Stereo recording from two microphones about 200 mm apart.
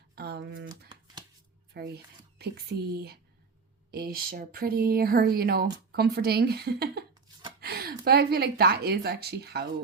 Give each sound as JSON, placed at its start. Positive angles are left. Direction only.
{"t": 0.2, "sound": "typewriter", "side_deg": -55}
{"t": 1.7, "sound": "a woman's voice", "side_deg": -50}